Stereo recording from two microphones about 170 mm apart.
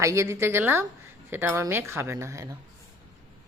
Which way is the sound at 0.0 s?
15° right (ahead or behind).